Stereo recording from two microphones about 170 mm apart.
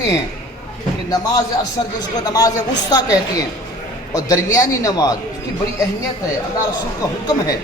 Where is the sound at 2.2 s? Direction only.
20° left (ahead or behind).